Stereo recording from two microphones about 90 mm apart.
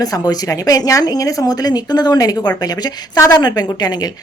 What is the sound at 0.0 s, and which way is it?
A woman's voice, 45° left (ahead or behind).